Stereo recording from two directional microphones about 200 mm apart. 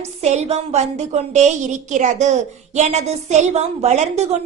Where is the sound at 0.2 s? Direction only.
35° right (ahead or behind).